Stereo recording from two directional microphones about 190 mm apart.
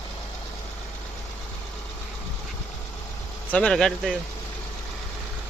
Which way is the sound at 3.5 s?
5° left (ahead or behind).